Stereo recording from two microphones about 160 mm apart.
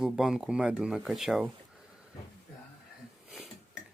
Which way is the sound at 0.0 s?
5° right (ahead or behind).